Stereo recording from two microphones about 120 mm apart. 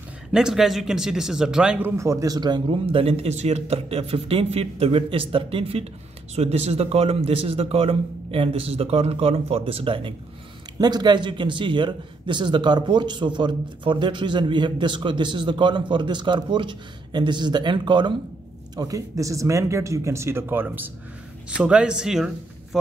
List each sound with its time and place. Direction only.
0.3 s a man's voice: 5° right (ahead or behind)
2.0 s a man's voice: 25° right (ahead or behind); by 10.1 s 50° right (ahead or behind)
10.8 s a man's voice: 35° right (ahead or behind)
18.8 s a man's voice: 25° right (ahead or behind); by 22.8 s 5° right (ahead or behind)